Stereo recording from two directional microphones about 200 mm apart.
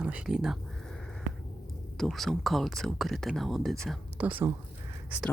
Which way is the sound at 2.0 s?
Centre (ahead or behind).